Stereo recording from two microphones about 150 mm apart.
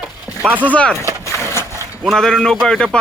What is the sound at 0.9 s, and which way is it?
Wood, 20° right (ahead or behind).